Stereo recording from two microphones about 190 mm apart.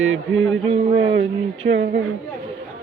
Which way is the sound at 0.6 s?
30° right (ahead or behind).